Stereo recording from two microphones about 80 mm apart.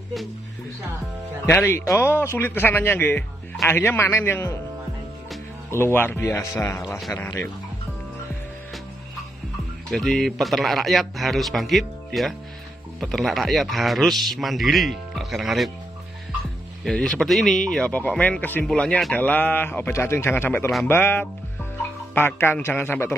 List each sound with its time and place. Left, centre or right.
1.5 s a man's voice: left
5.7 s speech: left
9.8 s a man's voice: centre
16.8 s a man's voice: centre
17.9 s a man's voice: left